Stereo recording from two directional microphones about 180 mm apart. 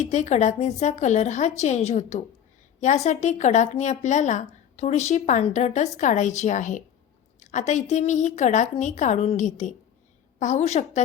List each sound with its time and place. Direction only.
0.0 s a woman's voice: 40° left (ahead or behind)